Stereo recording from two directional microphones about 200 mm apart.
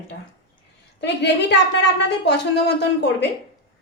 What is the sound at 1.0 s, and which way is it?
Speech, 60° left (ahead or behind).